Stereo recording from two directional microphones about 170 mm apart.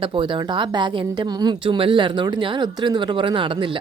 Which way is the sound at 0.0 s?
30° right (ahead or behind).